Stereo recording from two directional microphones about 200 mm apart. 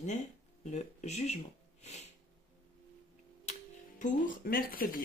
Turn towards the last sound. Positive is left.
turn(degrees=45)  # may be behind; listen again after turning